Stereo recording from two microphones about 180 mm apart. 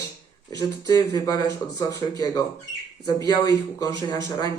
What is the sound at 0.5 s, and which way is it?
Speech, 20° left (ahead or behind).